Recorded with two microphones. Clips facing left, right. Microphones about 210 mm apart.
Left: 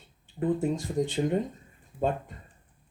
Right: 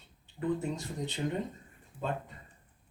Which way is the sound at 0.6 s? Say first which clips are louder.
Left 8 dB; 50° left (ahead or behind).